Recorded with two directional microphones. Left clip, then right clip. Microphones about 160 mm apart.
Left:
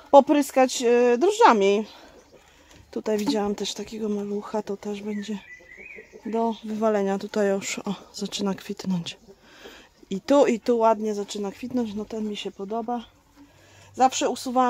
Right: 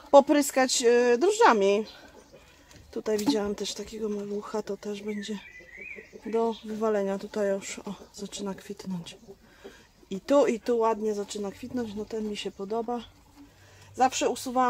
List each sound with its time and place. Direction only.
0.1 s speech: 45° left (ahead or behind); by 1.9 s 65° left (ahead or behind)
2.9 s speech: 60° left (ahead or behind); by 13.1 s 45° left (ahead or behind)
13.9 s speech: 65° left (ahead or behind)